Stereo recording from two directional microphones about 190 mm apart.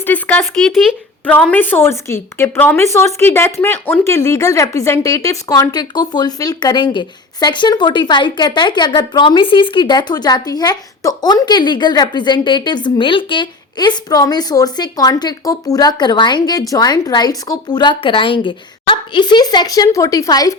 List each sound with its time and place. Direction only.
0.0 s a woman's voice: 10° left (ahead or behind)